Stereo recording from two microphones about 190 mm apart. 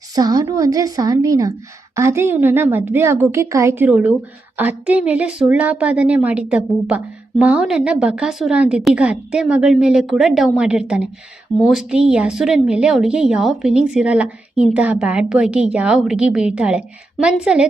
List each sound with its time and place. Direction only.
0.1 s a woman's voice: 20° right (ahead or behind)